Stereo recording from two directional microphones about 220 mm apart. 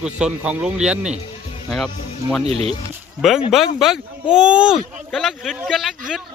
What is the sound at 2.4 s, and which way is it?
Speech, 25° right (ahead or behind).